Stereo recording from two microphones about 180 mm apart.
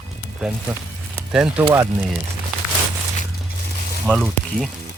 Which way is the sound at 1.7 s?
15° right (ahead or behind).